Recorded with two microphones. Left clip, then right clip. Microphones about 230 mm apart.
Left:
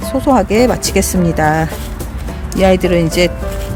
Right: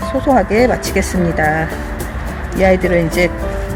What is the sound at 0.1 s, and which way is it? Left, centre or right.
Speech, left.